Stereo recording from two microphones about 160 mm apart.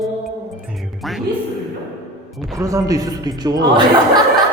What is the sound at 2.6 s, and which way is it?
A man's voice, 20° right (ahead or behind).